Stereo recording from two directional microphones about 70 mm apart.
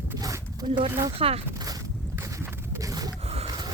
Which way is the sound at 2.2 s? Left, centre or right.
Right.